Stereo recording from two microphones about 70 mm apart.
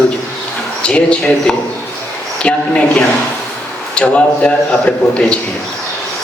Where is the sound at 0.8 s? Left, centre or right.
Centre.